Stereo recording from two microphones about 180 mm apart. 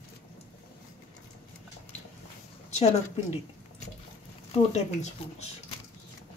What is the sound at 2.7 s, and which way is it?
Speech, 35° left (ahead or behind).